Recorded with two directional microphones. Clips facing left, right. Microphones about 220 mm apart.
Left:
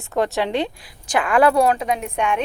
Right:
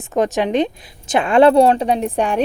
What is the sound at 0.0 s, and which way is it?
A woman's voice, 20° right (ahead or behind).